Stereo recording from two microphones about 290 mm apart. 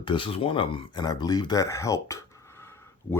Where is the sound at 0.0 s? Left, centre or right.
Centre.